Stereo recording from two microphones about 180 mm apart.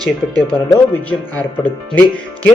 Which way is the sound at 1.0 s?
10° left (ahead or behind).